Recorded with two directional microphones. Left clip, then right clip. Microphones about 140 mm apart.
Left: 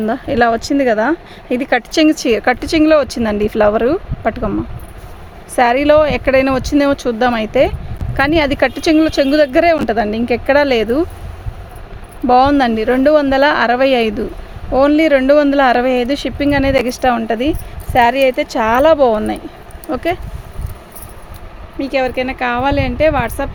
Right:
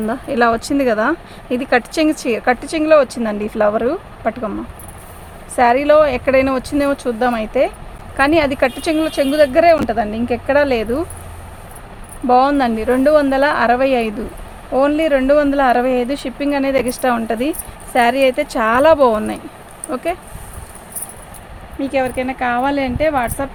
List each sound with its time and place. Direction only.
0.0 s speech: 40° left (ahead or behind); by 4.5 s 70° left (ahead or behind)
5.5 s speech: 80° left
8.1 s speech: 70° left (ahead or behind)
12.3 s speech: 65° left (ahead or behind)
14.7 s speech: 85° left; by 19.4 s 35° left (ahead or behind)
19.9 s speech: 50° left (ahead or behind)
21.8 s speech: 90° left